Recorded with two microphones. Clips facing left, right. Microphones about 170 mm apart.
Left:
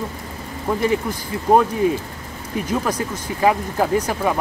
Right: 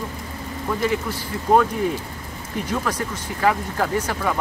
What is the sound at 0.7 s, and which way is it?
Speech, 20° left (ahead or behind).